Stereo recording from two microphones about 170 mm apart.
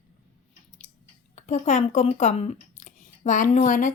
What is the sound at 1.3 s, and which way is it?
Speech, 45° left (ahead or behind).